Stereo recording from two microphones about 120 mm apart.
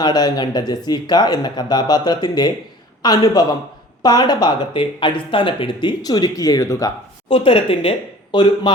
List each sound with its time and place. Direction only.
0.0 s speech: 35° left (ahead or behind)
7.3 s speech: 50° left (ahead or behind)